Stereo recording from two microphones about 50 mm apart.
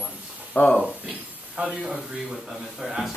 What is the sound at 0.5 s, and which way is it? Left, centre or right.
Speech, left.